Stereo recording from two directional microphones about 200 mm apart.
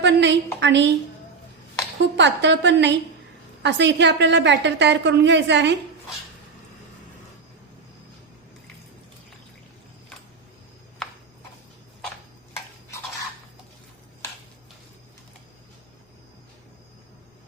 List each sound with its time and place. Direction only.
0.0 s a woman's voice: 60° right (ahead or behind)
2.1 s a woman's voice: 60° right (ahead or behind)
11.0 s a sound: centre (ahead or behind)